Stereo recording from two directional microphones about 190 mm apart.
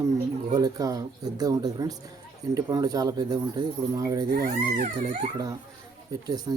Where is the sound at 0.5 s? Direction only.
20° right (ahead or behind).